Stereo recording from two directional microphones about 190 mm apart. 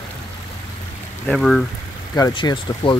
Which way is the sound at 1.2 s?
Centre (ahead or behind).